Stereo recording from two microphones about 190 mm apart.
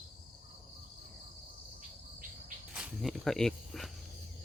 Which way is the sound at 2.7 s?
5° right (ahead or behind).